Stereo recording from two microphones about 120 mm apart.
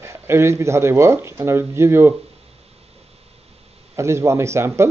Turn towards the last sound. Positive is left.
turn(degrees=-25)  # may be behind; listen again after turning